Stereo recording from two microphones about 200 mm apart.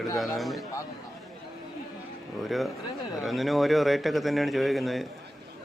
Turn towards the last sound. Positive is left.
turn(degrees=0)  # may be behind; listen again after turning